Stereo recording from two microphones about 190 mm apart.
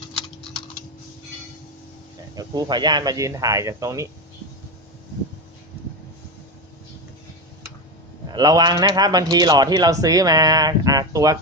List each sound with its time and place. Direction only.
2.3 s speech: 20° right (ahead or behind)
8.3 s a man's voice: 20° right (ahead or behind)